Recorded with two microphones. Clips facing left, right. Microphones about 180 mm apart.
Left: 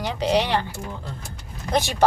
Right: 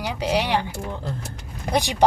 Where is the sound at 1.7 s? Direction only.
15° right (ahead or behind).